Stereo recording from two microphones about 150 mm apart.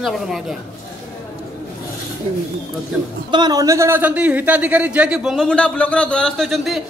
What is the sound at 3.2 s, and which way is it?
Speech, 30° right (ahead or behind).